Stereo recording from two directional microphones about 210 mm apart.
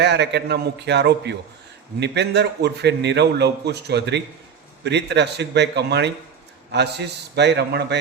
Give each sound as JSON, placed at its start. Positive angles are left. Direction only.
{"t": 0.0, "sound": "a man's voice", "side_deg": -55}